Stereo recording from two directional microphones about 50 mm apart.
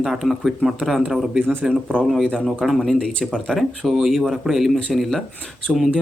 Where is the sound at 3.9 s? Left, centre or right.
Centre.